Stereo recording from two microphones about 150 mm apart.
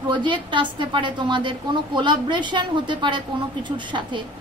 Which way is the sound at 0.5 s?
35° right (ahead or behind).